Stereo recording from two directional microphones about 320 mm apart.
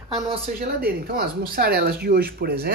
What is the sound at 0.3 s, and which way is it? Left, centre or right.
A man's voice, right.